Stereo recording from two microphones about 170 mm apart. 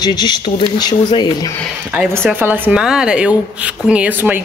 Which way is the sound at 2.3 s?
10° right (ahead or behind).